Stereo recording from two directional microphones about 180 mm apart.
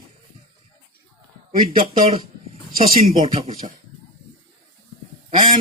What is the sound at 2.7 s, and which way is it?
Speech, 50° right (ahead or behind).